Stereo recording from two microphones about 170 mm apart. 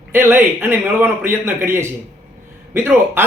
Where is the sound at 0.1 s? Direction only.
15° right (ahead or behind).